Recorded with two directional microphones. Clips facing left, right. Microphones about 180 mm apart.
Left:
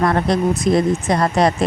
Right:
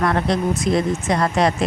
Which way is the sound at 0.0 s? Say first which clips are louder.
Left 3 dB; 35° left (ahead or behind).